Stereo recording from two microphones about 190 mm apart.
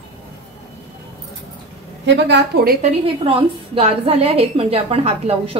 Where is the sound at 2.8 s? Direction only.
30° right (ahead or behind).